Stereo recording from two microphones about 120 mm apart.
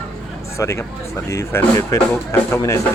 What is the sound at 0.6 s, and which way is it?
Speech, 25° left (ahead or behind).